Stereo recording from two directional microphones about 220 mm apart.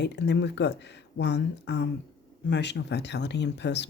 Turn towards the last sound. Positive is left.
turn(degrees=50)  # may be behind; listen again after turning